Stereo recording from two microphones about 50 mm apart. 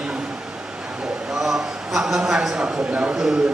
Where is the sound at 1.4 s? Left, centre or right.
Centre; by 3.2 s right.